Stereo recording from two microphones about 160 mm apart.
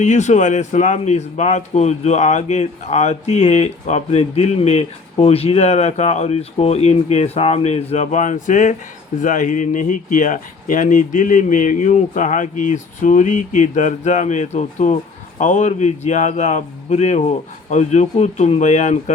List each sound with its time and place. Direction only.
0.0 s speech: 45° left (ahead or behind)